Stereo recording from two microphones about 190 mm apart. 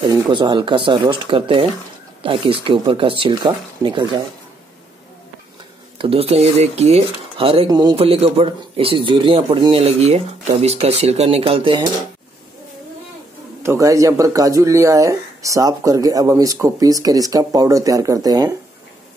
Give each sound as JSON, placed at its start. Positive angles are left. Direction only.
{"t": 0.0, "sound": "speech", "side_deg": -25}
{"t": 5.9, "sound": "speech", "side_deg": -30}
{"t": 13.6, "sound": "speech", "side_deg": -15}